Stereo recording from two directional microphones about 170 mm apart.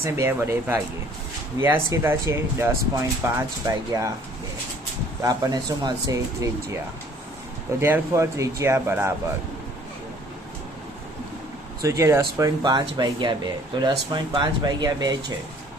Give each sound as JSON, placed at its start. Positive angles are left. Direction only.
{"t": 0.0, "sound": "speech", "side_deg": -15}
{"t": 5.2, "sound": "speech", "side_deg": -20}
{"t": 7.8, "sound": "speech", "side_deg": -15}
{"t": 11.8, "sound": "speech", "side_deg": -20}